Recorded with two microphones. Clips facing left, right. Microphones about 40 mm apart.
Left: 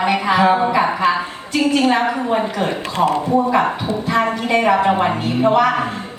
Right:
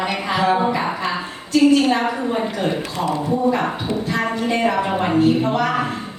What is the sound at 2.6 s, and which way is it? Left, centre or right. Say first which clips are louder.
A man's voice: left 4 dB; left.